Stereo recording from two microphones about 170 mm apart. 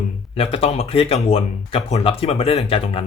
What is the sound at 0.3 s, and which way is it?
Speech, 35° left (ahead or behind).